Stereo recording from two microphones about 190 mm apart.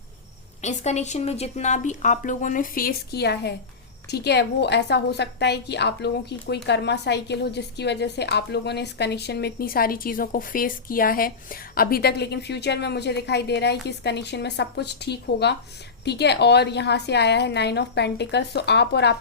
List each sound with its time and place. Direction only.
0.6 s a woman's voice: 35° left (ahead or behind); by 19.1 s 60° left (ahead or behind)